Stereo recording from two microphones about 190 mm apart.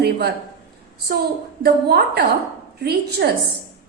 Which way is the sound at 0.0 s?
60° right (ahead or behind).